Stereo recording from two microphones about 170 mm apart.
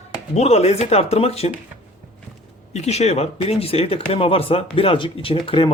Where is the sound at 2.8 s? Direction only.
40° left (ahead or behind).